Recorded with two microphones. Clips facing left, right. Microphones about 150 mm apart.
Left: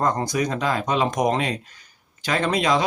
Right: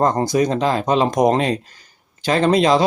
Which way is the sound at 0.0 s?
30° right (ahead or behind).